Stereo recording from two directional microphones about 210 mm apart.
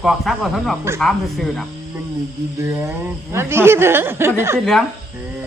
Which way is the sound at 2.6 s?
10° right (ahead or behind).